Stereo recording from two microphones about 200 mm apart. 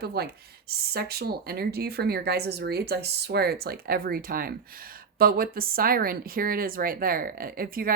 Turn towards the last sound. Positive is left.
turn(degrees=-45)  # may be behind; listen again after turning